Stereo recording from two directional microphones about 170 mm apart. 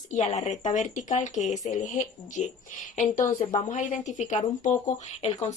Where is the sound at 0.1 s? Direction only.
45° left (ahead or behind).